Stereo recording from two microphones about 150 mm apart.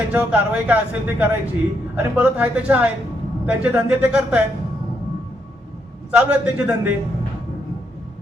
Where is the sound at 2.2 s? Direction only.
10° right (ahead or behind).